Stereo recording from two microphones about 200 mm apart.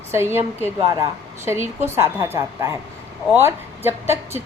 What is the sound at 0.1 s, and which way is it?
A woman's voice, 10° right (ahead or behind).